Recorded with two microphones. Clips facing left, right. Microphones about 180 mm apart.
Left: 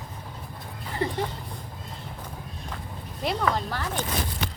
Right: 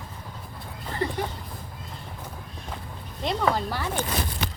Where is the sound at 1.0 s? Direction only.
20° left (ahead or behind).